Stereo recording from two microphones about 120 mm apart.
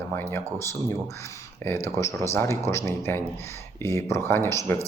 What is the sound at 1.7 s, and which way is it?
Speech, 20° left (ahead or behind).